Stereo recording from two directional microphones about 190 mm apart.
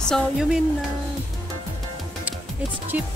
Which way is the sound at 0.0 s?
Centre (ahead or behind).